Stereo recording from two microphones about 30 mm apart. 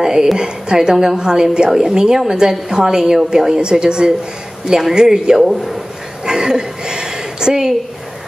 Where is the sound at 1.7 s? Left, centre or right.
Centre.